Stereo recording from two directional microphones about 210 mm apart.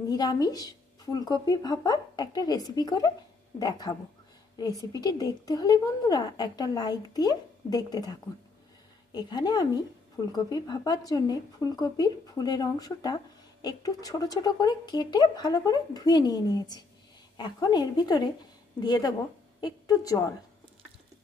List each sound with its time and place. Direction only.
0.1 s a woman's voice: 20° left (ahead or behind)